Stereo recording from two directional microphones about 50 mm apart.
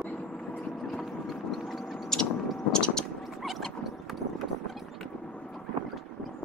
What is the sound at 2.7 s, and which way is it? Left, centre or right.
Vehicle, centre.